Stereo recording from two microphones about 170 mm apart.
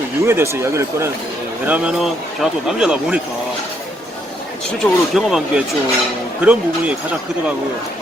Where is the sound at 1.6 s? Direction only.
5° right (ahead or behind).